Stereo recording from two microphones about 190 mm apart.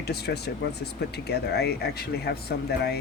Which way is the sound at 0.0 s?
60° left (ahead or behind).